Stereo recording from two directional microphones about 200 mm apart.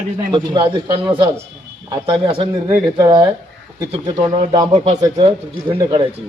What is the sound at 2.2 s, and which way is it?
Speech, 25° right (ahead or behind).